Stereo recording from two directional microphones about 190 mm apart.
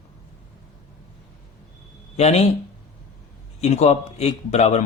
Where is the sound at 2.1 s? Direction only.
35° left (ahead or behind).